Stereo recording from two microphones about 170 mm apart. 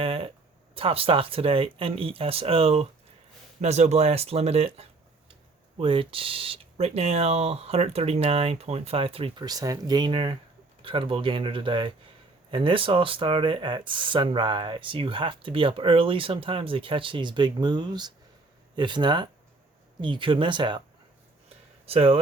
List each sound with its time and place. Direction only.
0.0 s a sound: 35° right (ahead or behind)
0.7 s speech: 35° right (ahead or behind)
21.8 s speech: 35° right (ahead or behind)